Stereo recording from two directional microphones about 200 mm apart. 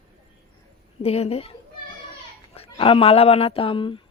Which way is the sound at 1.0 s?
30° left (ahead or behind).